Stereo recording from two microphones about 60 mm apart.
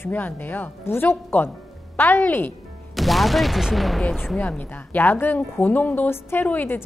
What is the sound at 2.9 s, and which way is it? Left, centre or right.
Speech, centre.